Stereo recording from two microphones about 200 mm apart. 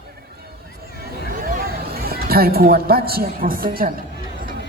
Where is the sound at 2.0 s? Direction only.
50° right (ahead or behind).